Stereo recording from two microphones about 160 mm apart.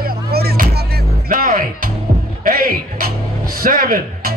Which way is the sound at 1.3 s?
60° right (ahead or behind).